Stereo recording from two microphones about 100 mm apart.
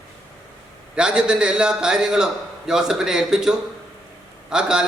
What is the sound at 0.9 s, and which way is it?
A man's voice, 10° right (ahead or behind).